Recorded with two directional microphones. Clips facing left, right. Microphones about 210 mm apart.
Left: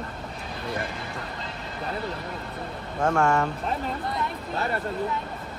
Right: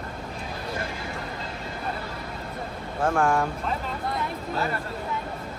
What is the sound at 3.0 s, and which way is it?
Speech, 5° right (ahead or behind).